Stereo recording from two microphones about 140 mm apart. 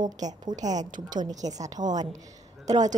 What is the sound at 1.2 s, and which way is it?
Speech, 25° right (ahead or behind).